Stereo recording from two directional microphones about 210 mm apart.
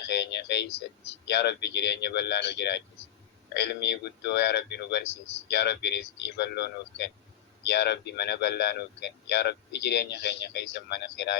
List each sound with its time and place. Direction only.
0.1 s speech: 55° left (ahead or behind)